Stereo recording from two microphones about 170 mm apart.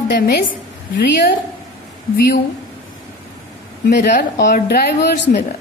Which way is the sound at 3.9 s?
55° left (ahead or behind).